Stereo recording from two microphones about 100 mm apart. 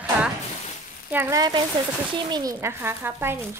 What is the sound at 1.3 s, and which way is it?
A woman's voice, 40° right (ahead or behind).